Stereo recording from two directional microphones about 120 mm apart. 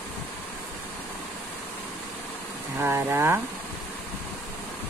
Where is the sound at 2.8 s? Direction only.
20° right (ahead or behind).